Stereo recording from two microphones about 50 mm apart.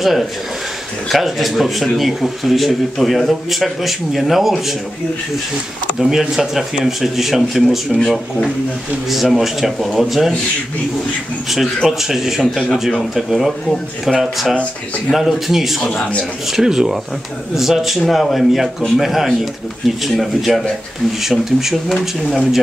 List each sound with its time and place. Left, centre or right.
1.0 s speech: centre
5.9 s speech: centre
11.5 s speech: centre
14.5 s speech: centre
15.1 s speech: centre
15.8 s speech: left
16.5 s speech: centre